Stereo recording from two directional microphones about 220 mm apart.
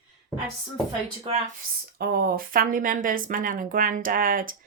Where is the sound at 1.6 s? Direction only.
45° right (ahead or behind).